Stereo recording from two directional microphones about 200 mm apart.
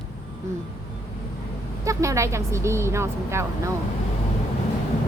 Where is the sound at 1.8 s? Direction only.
15° right (ahead or behind).